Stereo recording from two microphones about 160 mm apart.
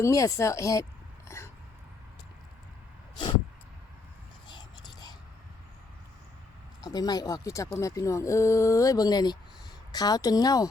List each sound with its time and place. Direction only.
0.0 s speech: 20° left (ahead or behind)
1.4 s dog: 20° left (ahead or behind)
4.4 s whispering: 30° left (ahead or behind)
6.8 s speech: 25° left (ahead or behind)